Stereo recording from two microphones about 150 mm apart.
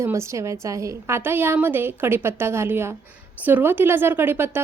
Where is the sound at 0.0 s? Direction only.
20° right (ahead or behind).